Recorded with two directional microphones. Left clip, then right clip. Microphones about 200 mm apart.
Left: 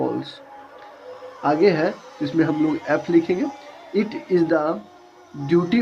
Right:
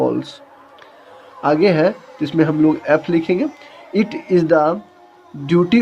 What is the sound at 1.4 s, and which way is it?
Speech, 55° right (ahead or behind).